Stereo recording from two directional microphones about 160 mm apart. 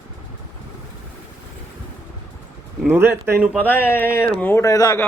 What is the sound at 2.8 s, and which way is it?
A man's voice, 15° right (ahead or behind).